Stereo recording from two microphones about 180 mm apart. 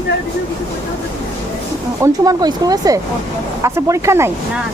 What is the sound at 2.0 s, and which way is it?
Speech, 20° right (ahead or behind).